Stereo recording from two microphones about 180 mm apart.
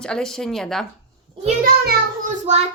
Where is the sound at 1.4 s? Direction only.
50° right (ahead or behind).